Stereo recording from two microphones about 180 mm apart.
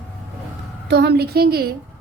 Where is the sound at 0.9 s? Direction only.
65° right (ahead or behind).